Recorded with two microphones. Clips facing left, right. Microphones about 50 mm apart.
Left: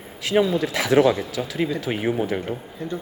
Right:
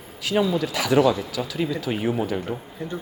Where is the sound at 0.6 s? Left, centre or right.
Left.